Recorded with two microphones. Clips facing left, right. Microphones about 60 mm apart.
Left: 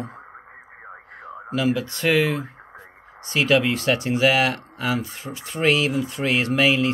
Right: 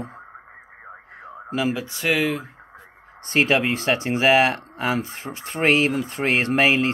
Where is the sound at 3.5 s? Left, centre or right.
Right.